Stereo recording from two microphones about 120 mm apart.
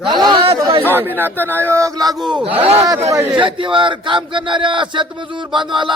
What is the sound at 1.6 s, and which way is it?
Speech, 25° right (ahead or behind).